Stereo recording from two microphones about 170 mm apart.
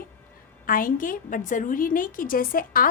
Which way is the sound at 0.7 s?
55° left (ahead or behind).